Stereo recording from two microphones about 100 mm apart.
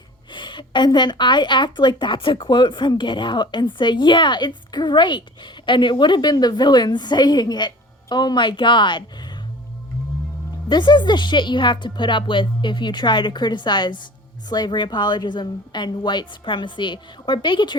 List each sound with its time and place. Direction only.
0.3 s a woman's voice: 55° left (ahead or behind)
10.7 s a woman's voice: 50° left (ahead or behind)